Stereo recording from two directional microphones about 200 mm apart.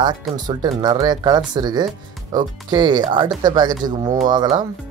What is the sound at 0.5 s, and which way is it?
Speech, 20° right (ahead or behind).